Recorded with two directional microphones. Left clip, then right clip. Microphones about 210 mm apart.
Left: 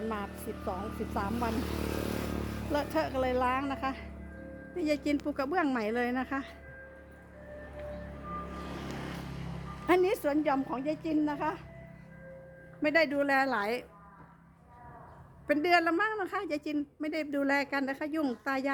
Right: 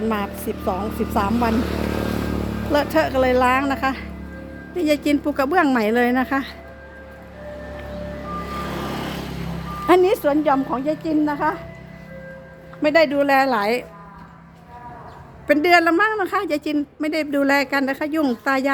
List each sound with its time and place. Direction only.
0.1 s a woman's voice: 5° right (ahead or behind)
1.5 s vehicle: 50° left (ahead or behind)
2.7 s a woman's voice: centre (ahead or behind)
8.5 s vehicle: 30° right (ahead or behind)
9.8 s a woman's voice: centre (ahead or behind)
12.8 s a woman's voice: 5° left (ahead or behind)
15.4 s a woman's voice: centre (ahead or behind)